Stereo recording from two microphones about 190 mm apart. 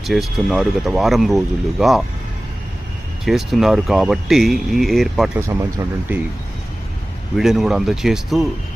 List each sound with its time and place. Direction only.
0.0 s speech: centre (ahead or behind)
3.2 s speech: centre (ahead or behind)
5.4 s speech: 15° right (ahead or behind)
7.3 s speech: centre (ahead or behind)